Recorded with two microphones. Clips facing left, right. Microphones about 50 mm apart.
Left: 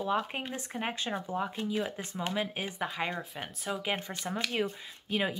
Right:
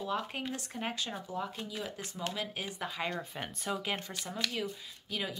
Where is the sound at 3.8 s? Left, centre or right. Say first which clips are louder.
Left 3 dB; centre.